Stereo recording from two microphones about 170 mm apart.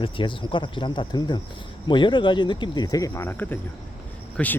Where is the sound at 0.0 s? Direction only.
30° left (ahead or behind).